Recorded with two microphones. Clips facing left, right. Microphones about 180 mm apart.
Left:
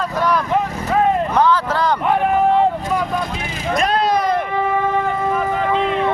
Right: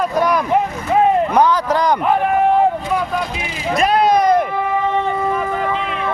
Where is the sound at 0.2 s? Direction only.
15° right (ahead or behind).